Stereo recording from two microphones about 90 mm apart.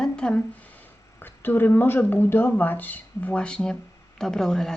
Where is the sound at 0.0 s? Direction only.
10° left (ahead or behind).